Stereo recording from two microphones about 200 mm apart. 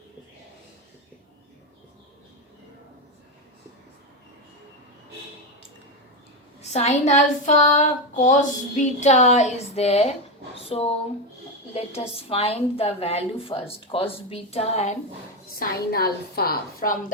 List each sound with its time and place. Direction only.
6.6 s child singing: 35° left (ahead or behind)
10.6 s a woman's voice: 30° left (ahead or behind)
15.5 s a woman's voice: 50° left (ahead or behind)